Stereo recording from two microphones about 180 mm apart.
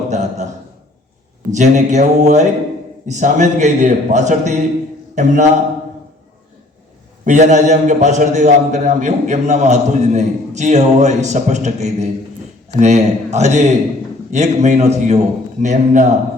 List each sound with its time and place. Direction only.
0.1 s a sound: 40° right (ahead or behind)
1.5 s a man's voice: 40° right (ahead or behind)
7.3 s a man's voice: 40° right (ahead or behind)